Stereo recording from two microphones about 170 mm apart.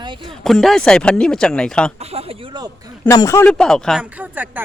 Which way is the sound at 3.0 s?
20° left (ahead or behind).